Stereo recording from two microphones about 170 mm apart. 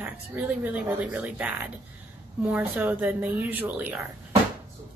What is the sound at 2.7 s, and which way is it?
A woman's voice, 10° right (ahead or behind).